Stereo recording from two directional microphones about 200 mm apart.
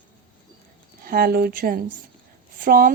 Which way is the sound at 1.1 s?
50° right (ahead or behind).